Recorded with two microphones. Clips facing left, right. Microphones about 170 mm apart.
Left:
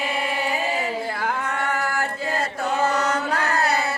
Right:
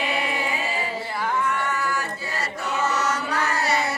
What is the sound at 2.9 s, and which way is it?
Mantra, 55° left (ahead or behind).